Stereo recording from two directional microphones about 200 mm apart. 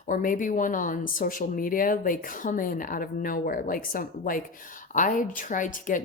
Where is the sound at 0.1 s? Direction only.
40° left (ahead or behind).